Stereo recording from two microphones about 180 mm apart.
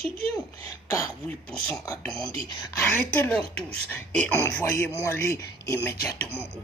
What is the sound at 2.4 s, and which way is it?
Speech, 20° left (ahead or behind).